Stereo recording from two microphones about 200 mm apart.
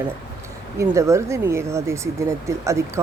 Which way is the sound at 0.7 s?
15° right (ahead or behind).